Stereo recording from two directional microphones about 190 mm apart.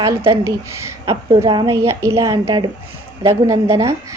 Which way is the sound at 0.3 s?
15° right (ahead or behind).